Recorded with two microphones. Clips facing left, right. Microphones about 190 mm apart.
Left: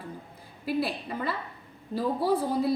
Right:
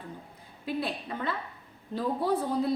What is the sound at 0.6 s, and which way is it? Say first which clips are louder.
A woman's voice: left 3 dB; 10° left (ahead or behind).